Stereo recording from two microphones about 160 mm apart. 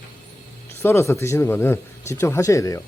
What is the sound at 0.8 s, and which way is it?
Speech, 15° left (ahead or behind).